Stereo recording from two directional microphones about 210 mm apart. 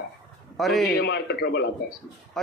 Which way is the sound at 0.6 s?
Centre (ahead or behind).